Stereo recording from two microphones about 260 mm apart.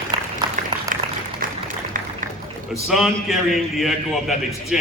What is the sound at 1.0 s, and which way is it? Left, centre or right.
Applause, centre.